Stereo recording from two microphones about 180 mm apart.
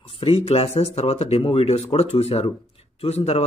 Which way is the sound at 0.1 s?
30° left (ahead or behind).